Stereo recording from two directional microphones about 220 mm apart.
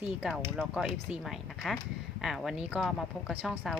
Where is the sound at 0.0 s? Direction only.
5° right (ahead or behind).